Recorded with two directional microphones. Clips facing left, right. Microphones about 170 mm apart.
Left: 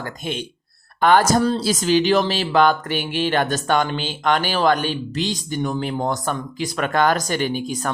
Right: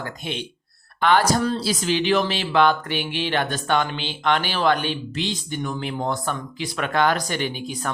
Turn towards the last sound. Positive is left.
turn(degrees=45)  # may be behind; listen again after turning